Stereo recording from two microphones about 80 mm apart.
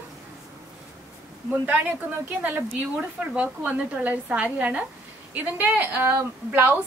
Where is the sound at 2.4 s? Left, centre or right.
Right.